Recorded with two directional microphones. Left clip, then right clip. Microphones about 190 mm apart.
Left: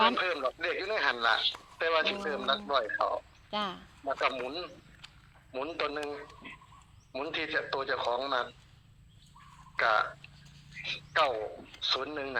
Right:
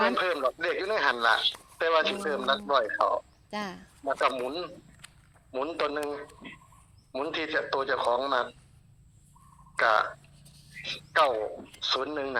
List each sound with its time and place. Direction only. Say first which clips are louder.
0.0 s speech: right 2 dB; 30° right (ahead or behind)
9.7 s speech: right 3 dB; 30° right (ahead or behind)